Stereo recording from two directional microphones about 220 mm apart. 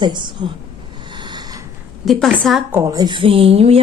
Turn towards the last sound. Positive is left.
turn(degrees=-25)  # may be behind; listen again after turning